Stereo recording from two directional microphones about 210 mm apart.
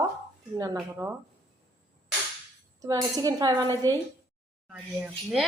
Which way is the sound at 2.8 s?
15° right (ahead or behind).